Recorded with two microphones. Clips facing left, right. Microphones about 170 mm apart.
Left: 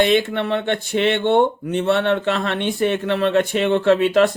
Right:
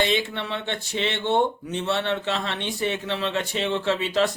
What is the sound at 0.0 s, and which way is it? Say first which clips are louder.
Speech: left 7 dB; 55° left (ahead or behind).